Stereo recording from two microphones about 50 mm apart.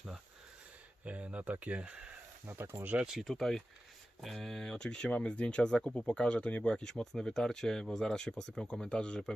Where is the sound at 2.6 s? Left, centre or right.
Right.